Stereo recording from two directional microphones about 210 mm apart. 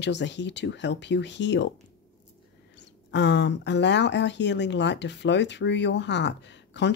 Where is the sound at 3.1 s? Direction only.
55° left (ahead or behind).